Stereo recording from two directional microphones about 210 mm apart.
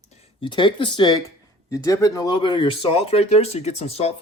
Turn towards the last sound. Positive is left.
turn(degrees=30)  # may be behind; listen again after turning